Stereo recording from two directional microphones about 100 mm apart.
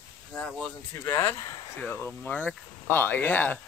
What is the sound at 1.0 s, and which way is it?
Speech, 25° left (ahead or behind).